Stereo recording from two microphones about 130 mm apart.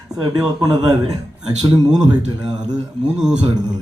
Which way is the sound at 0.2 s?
30° right (ahead or behind).